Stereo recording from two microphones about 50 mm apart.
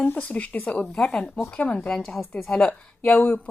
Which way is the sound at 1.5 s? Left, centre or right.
Left.